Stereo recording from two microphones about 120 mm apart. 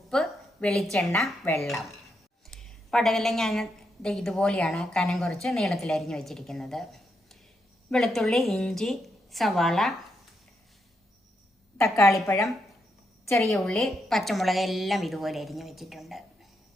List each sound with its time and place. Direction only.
0.1 s a sound: 5° left (ahead or behind)
2.5 s a woman's voice: 5° left (ahead or behind)
11.8 s a woman's voice: 25° left (ahead or behind)
13.7 s a woman's voice: 5° left (ahead or behind)